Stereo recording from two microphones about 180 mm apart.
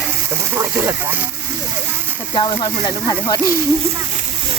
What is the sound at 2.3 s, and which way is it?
Speech, 25° left (ahead or behind).